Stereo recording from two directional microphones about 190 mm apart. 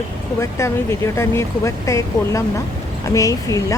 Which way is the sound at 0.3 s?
15° left (ahead or behind).